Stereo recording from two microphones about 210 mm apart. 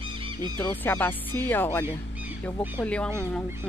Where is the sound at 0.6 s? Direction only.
10° left (ahead or behind).